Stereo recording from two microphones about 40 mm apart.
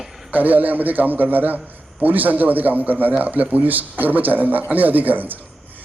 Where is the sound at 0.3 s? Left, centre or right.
Right.